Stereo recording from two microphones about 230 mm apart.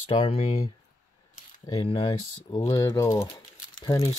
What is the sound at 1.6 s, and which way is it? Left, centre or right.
Speech, left.